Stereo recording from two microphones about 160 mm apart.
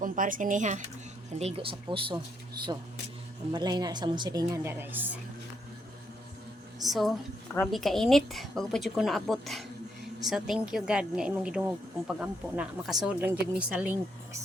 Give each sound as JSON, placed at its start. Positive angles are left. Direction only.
{"t": 0.0, "sound": "speech", "side_deg": -55}
{"t": 3.5, "sound": "speech", "side_deg": -25}
{"t": 6.8, "sound": "speech", "side_deg": 0}